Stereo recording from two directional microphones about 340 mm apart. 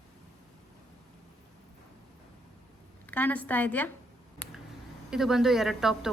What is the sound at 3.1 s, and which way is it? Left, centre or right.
Speech, centre.